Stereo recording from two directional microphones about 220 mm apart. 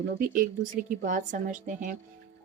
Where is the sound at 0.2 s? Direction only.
40° right (ahead or behind).